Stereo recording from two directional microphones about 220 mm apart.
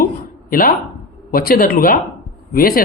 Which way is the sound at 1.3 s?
40° left (ahead or behind).